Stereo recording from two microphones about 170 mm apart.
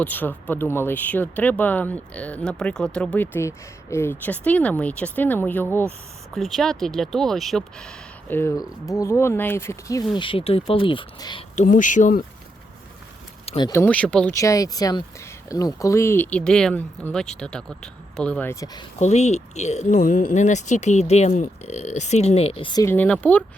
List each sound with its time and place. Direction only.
0.0 s speech: 10° left (ahead or behind)
6.3 s speech: centre (ahead or behind); by 10.0 s 15° left (ahead or behind)
10.2 s speech: 30° left (ahead or behind)
11.5 s speech: 50° left (ahead or behind)
13.6 s speech: 20° left (ahead or behind)
13.8 s speech: 5° left (ahead or behind)
14.3 s speech: 20° left (ahead or behind)
18.6 s speech: 25° left (ahead or behind)
18.9 s speech: 40° left (ahead or behind)
22.9 s speech: 10° left (ahead or behind)